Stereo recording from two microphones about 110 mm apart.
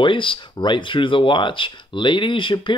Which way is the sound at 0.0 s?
50° left (ahead or behind).